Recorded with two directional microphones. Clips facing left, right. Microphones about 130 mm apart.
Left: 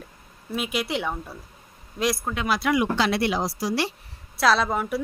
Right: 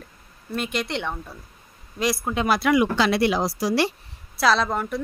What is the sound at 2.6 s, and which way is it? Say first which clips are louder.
Speech: right 2 dB; 90° right.